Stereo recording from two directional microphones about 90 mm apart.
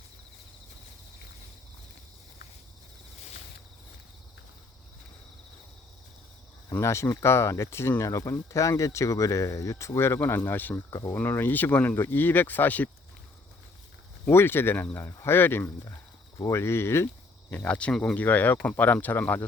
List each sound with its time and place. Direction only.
6.7 s speech: 30° left (ahead or behind)
14.3 s speech: 25° left (ahead or behind)
17.7 s speech: 15° left (ahead or behind)